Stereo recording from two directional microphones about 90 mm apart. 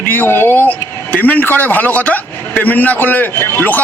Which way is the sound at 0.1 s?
25° left (ahead or behind).